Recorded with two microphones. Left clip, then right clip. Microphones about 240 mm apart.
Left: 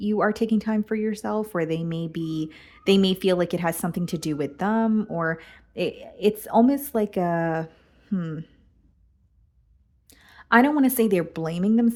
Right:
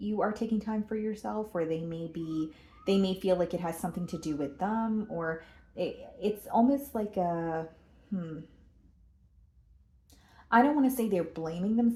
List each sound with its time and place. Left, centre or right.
0.0 s speech: left
10.2 s speech: left